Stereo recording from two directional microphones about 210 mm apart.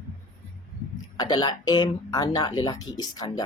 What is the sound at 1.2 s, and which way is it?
Speech, 20° left (ahead or behind).